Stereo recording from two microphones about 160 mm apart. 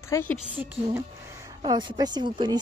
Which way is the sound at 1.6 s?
30° right (ahead or behind).